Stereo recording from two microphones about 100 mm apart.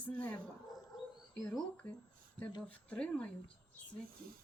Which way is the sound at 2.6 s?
10° left (ahead or behind).